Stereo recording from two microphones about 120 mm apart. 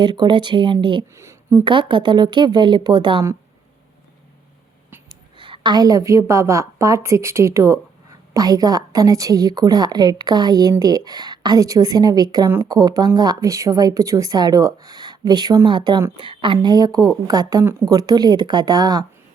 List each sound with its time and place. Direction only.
0.0 s a woman's voice: 40° right (ahead or behind)
1.1 s speech: 25° right (ahead or behind)
1.6 s a woman's voice: 40° right (ahead or behind)
5.0 s a woman's voice: 40° right (ahead or behind)
16.6 s a woman's voice: 35° right (ahead or behind)